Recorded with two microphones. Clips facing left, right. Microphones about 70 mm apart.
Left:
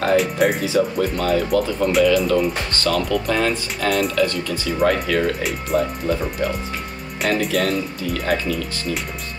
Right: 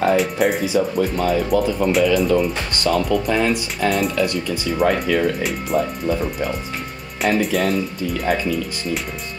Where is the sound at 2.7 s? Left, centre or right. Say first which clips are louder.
Right 2 dB; centre.